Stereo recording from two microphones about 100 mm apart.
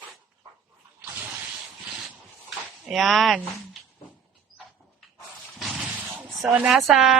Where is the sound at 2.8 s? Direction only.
Centre (ahead or behind).